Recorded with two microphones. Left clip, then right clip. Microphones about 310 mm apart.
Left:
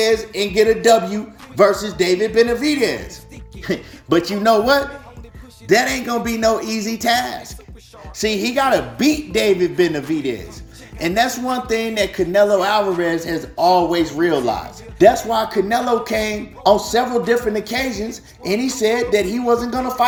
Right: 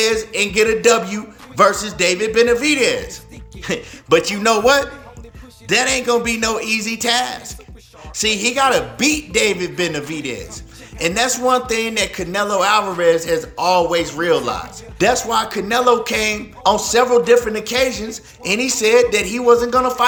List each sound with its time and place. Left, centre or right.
0.0 s music: centre
3.6 s a man's voice: centre